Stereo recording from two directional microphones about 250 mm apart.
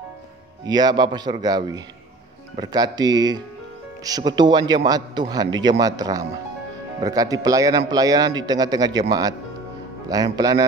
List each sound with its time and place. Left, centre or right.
0.7 s a man's voice: centre
10.0 s a man's voice: centre